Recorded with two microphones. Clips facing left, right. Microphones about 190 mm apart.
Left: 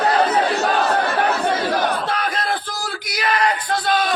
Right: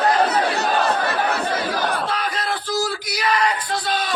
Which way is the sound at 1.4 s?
65° left (ahead or behind).